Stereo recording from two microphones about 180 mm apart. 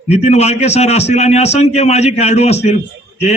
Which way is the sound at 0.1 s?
40° left (ahead or behind).